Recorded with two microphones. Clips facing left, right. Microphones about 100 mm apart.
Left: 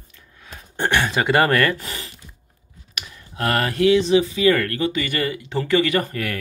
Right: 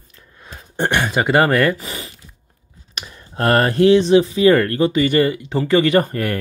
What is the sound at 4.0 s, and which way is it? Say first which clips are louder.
Speech: right 4 dB; 55° right (ahead or behind).